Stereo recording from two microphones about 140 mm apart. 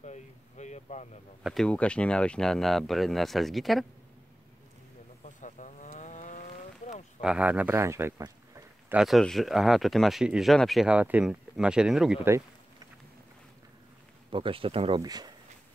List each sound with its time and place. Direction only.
0.0 s speech: 55° left (ahead or behind)
1.4 s speech: centre (ahead or behind)
5.2 s a sound: 60° left (ahead or behind)
7.2 s speech: 5° right (ahead or behind)
8.8 s speech: 5° right (ahead or behind)
14.3 s speech: 40° right (ahead or behind)
15.0 s speech: 30° right (ahead or behind)